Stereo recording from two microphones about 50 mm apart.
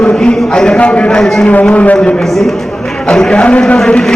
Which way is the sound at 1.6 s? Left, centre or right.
Left.